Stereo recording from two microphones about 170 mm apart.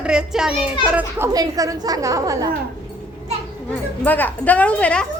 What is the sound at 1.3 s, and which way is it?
A woman's voice, 20° right (ahead or behind).